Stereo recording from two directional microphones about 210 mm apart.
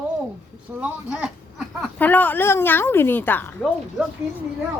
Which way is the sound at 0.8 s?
5° right (ahead or behind).